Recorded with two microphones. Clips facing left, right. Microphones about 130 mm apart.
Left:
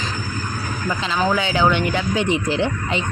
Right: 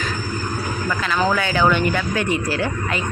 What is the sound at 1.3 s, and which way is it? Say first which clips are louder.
Speech: even; 15° left (ahead or behind).